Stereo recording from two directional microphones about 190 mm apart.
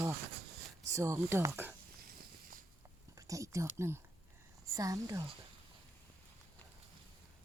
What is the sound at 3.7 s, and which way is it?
Speech, 15° right (ahead or behind).